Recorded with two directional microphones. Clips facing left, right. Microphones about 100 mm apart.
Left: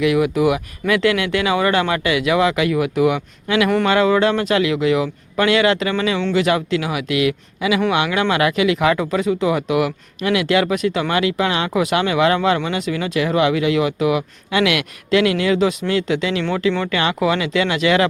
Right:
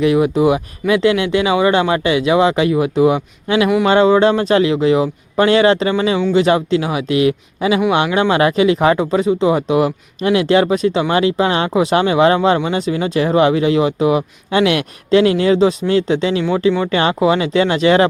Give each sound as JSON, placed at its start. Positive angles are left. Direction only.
{"t": 0.0, "sound": "speech", "side_deg": -30}